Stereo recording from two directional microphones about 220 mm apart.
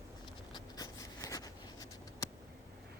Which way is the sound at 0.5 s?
15° left (ahead or behind).